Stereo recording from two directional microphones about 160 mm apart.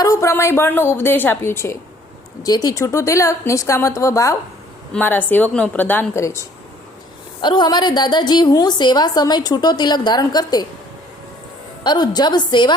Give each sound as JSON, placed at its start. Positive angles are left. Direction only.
{"t": 0.0, "sound": "a woman's voice", "side_deg": 20}
{"t": 7.4, "sound": "a woman's voice", "side_deg": 30}
{"t": 11.8, "sound": "a woman's voice", "side_deg": 25}